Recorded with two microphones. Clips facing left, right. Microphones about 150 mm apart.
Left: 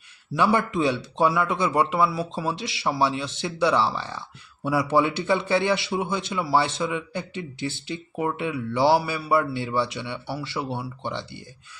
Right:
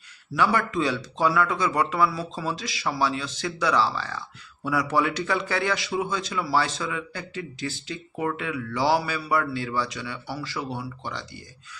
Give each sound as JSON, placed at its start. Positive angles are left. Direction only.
{"t": 0.3, "sound": "a man's voice", "side_deg": 25}